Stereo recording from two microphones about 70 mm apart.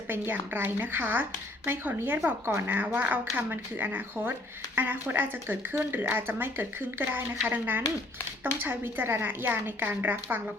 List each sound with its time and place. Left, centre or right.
0.1 s a woman's voice: right